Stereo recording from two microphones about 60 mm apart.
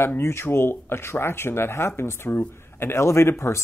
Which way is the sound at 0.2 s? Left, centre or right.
Left.